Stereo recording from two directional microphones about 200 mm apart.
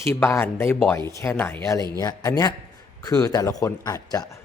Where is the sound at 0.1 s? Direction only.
10° left (ahead or behind).